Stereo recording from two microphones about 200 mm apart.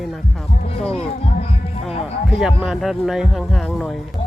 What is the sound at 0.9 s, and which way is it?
Music, 30° left (ahead or behind).